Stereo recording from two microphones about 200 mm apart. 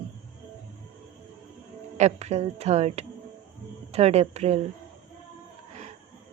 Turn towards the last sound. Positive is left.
turn(degrees=-30)  # may be behind; listen again after turning